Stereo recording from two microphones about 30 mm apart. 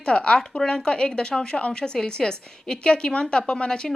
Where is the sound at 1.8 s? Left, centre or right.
Left.